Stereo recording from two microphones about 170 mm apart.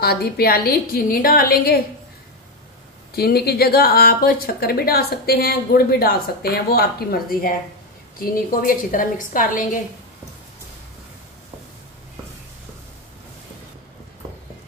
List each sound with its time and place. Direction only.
0.0 s speech: 65° left (ahead or behind)
3.2 s a woman's voice: 65° left (ahead or behind)